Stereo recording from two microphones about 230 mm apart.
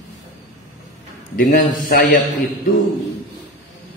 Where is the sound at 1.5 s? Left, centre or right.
Left.